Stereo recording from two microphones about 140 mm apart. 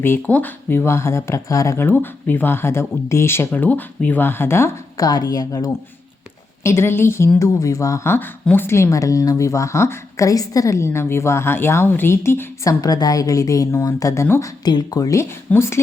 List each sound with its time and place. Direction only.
0.0 s a woman's voice: 15° left (ahead or behind)
12.8 s a woman's voice: 30° left (ahead or behind)
14.6 s a woman's voice: 30° left (ahead or behind)